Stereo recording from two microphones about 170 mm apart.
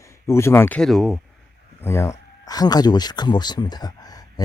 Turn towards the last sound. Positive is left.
turn(degrees=25)  # may be behind; listen again after turning